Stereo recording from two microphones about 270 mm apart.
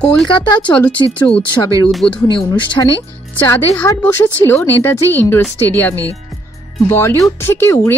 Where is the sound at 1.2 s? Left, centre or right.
Centre.